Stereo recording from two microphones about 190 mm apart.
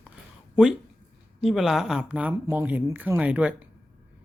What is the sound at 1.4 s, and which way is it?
Speech, centre (ahead or behind).